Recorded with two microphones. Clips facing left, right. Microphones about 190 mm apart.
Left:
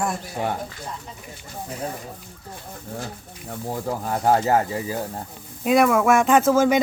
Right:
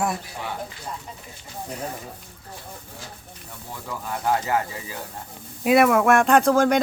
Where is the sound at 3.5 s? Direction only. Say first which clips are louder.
Left 8 dB; 45° left (ahead or behind).